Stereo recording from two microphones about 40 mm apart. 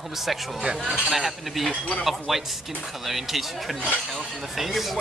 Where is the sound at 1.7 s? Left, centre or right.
Left.